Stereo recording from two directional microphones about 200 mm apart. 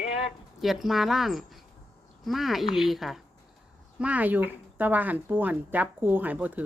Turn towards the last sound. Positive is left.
turn(degrees=-10)  # may be behind; listen again after turning